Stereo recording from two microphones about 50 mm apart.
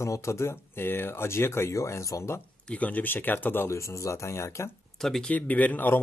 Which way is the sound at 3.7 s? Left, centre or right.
Left.